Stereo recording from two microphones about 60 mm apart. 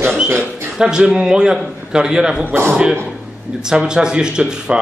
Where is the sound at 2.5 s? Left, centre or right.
Right.